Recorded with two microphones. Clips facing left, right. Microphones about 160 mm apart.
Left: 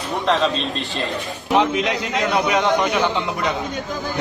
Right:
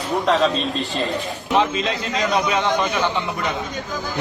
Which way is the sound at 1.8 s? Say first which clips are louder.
Left 1 dB; 15° left (ahead or behind).